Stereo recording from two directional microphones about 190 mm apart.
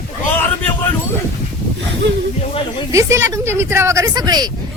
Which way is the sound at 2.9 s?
15° right (ahead or behind).